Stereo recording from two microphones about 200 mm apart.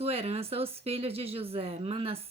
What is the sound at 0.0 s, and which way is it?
Speech, 30° right (ahead or behind).